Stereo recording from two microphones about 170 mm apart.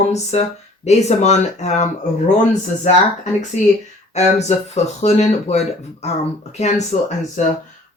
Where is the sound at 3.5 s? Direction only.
45° left (ahead or behind).